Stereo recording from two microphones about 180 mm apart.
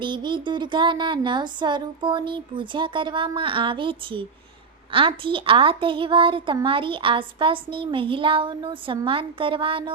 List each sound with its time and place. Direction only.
0.0 s a woman's voice: 25° right (ahead or behind)